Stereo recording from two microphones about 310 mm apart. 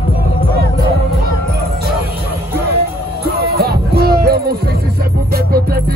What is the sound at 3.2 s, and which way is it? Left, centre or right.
Music, right.